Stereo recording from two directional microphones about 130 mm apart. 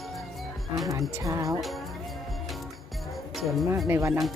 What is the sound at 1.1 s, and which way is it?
Speech, 25° right (ahead or behind).